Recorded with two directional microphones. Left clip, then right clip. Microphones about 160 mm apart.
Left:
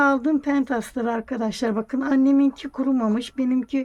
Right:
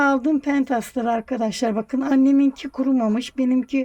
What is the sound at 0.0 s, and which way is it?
Speech, 25° right (ahead or behind).